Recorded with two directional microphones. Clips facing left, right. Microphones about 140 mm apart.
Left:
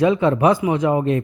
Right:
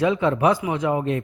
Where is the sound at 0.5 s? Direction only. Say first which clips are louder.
Left 4 dB; 25° left (ahead or behind).